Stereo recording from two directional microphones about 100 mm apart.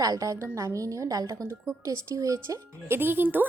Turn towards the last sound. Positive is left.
turn(degrees=-20)  # may be behind; listen again after turning